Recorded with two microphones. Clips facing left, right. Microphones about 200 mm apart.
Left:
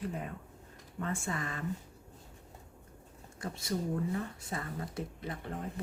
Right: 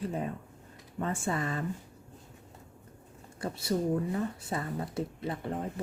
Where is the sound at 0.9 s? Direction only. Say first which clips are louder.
Right 4 dB; 35° right (ahead or behind).